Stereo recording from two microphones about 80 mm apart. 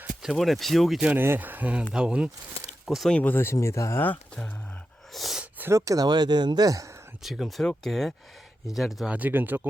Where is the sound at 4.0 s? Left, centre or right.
Left.